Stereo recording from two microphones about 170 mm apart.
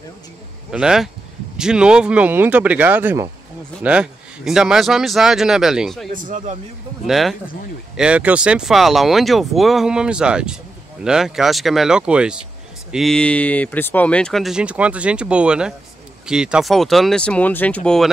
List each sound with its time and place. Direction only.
0.7 s speech: 5° right (ahead or behind)
6.1 s speech: 50° right (ahead or behind)
7.1 s speech: centre (ahead or behind)